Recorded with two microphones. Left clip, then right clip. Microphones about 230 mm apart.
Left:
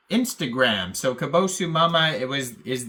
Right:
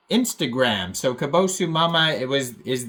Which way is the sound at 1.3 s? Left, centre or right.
Left.